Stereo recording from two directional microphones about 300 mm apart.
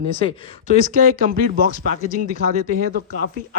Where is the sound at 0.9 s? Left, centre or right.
Right.